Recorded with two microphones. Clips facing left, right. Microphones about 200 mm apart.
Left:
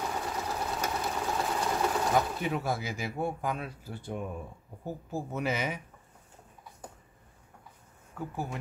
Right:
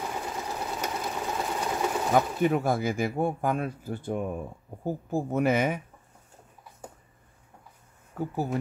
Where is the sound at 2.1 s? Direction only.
50° right (ahead or behind).